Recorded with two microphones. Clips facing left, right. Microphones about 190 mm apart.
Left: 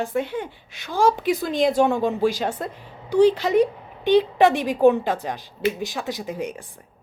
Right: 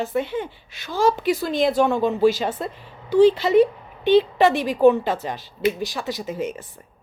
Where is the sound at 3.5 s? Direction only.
15° left (ahead or behind).